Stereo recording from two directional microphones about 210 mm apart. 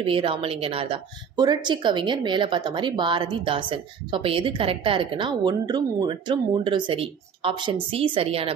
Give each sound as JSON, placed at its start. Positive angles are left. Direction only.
{"t": 0.0, "sound": "speech", "side_deg": -25}